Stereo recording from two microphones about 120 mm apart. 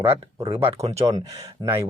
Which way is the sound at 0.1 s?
20° right (ahead or behind).